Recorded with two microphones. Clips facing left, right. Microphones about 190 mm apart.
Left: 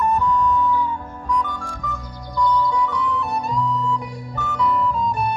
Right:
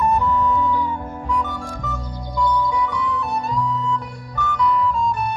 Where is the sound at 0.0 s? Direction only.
10° right (ahead or behind).